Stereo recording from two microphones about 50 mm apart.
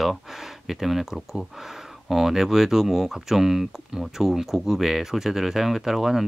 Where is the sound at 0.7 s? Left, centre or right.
Centre.